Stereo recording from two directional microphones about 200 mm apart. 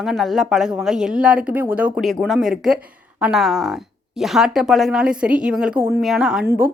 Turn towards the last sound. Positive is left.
turn(degrees=-10)  # may be behind; listen again after turning